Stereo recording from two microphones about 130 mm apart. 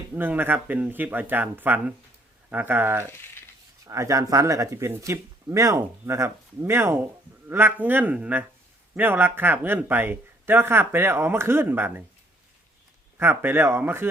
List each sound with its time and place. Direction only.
0.1 s speech: 15° right (ahead or behind)
3.1 s a sound: 15° left (ahead or behind)
3.8 s speech: 25° right (ahead or behind)
13.1 s speech: 15° right (ahead or behind)